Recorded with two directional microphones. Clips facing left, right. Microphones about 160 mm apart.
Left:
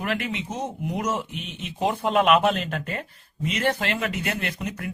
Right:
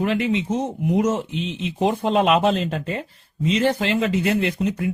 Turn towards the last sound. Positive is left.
turn(degrees=-25)  # may be behind; listen again after turning